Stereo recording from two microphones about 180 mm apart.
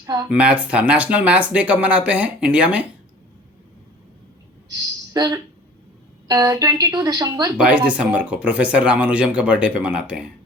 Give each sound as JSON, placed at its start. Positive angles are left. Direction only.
{"t": 0.0, "sound": "speech", "side_deg": -20}
{"t": 0.3, "sound": "speech", "side_deg": -5}
{"t": 4.7, "sound": "a sound", "side_deg": -20}
{"t": 6.2, "sound": "speech", "side_deg": -20}
{"t": 7.5, "sound": "speech", "side_deg": -5}